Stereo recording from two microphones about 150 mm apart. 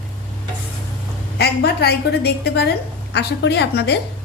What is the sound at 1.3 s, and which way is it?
A woman's voice, 90° left.